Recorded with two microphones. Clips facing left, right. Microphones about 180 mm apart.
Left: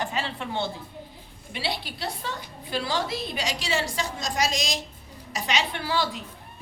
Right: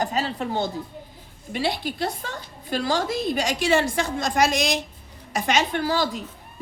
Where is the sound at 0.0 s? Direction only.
40° right (ahead or behind).